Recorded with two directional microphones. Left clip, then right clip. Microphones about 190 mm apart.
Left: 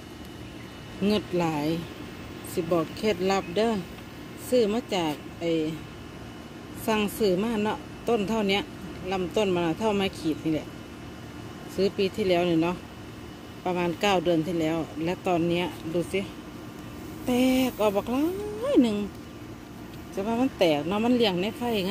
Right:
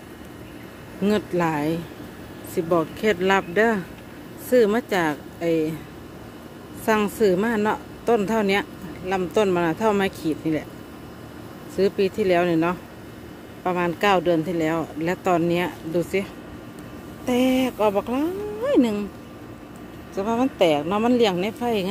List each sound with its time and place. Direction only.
1.0 s speech: 15° right (ahead or behind)
6.9 s speech: 20° right (ahead or behind)
11.7 s speech: 15° right (ahead or behind)
17.3 s speech: 10° right (ahead or behind)
20.2 s speech: 10° right (ahead or behind)